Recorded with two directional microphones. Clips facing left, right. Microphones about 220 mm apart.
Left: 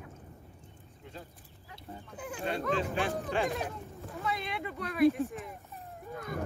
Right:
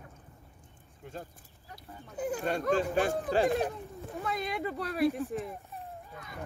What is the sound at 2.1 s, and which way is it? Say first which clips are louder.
Speech: right 4 dB; 40° right (ahead or behind).